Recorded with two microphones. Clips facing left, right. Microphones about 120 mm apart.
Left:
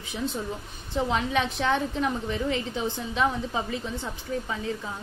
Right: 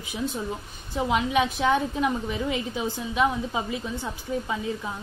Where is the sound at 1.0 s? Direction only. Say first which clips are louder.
Right 4 dB; 15° right (ahead or behind).